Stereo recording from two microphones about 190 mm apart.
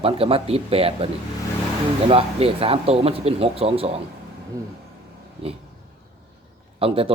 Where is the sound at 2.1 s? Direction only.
30° right (ahead or behind).